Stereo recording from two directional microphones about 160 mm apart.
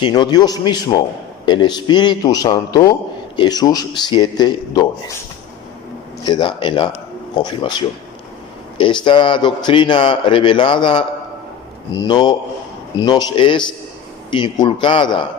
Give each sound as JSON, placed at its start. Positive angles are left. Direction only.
{"t": 0.0, "sound": "a man's voice", "side_deg": 30}
{"t": 6.2, "sound": "a man's voice", "side_deg": 25}